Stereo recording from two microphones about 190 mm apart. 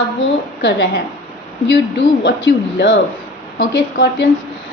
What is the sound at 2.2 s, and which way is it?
A woman's voice, 70° left (ahead or behind).